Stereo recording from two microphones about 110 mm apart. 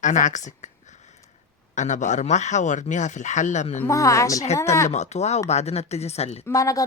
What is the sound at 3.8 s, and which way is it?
Speech, 30° left (ahead or behind).